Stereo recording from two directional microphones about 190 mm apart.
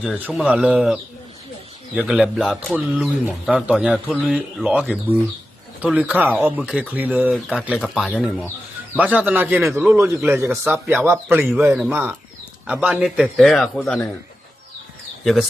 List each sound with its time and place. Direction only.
0.0 s speech: 5° right (ahead or behind)
2.0 s speech: 5° right (ahead or behind)
15.2 s speech: centre (ahead or behind)